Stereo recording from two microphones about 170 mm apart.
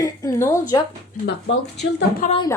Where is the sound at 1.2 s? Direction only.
75° left (ahead or behind).